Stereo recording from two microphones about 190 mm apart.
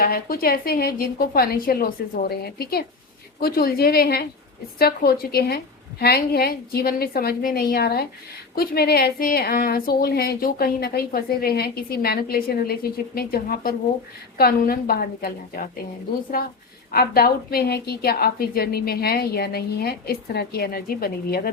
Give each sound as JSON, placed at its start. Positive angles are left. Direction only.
{"t": 0.0, "sound": "a woman's voice", "side_deg": 50}
{"t": 16.9, "sound": "a woman's voice", "side_deg": 55}